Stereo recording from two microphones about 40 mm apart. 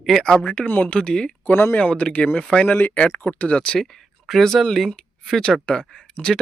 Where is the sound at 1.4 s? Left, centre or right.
Left.